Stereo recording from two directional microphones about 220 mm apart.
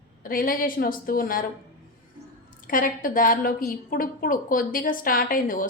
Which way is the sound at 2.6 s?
40° left (ahead or behind).